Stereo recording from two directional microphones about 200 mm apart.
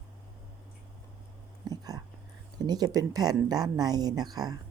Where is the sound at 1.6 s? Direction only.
20° right (ahead or behind).